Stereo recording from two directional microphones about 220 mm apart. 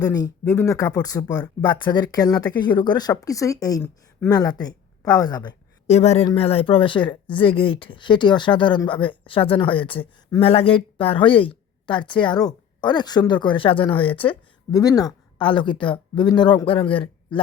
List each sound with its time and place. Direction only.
0.0 s speech: 15° left (ahead or behind)
5.9 s speech: 30° left (ahead or behind)